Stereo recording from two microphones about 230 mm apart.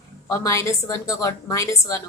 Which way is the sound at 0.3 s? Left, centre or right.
Centre.